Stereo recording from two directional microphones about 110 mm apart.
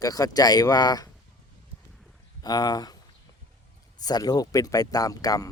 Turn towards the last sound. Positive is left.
turn(degrees=35)  # may be behind; listen again after turning